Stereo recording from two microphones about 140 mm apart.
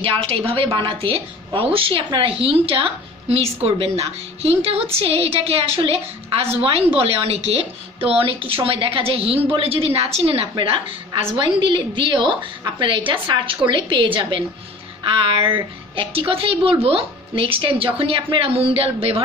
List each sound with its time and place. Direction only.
0.0 s a woman's voice: 40° right (ahead or behind)